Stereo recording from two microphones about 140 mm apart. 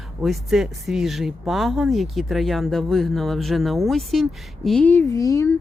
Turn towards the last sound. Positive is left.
turn(degrees=25)  # may be behind; listen again after turning